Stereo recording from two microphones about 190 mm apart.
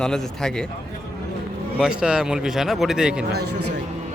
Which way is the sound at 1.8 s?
5° right (ahead or behind).